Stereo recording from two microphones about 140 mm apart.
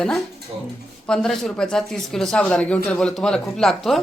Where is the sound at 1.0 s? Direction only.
5° left (ahead or behind).